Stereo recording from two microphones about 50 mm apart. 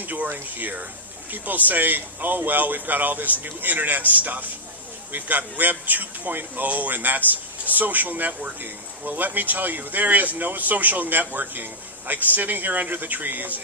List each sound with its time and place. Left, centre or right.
0.0 s speech: right